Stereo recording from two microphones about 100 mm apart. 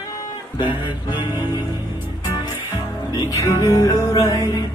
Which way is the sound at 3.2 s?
30° left (ahead or behind).